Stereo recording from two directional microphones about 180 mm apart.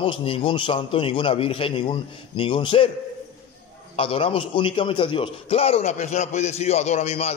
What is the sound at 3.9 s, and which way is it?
A man's voice, 30° left (ahead or behind).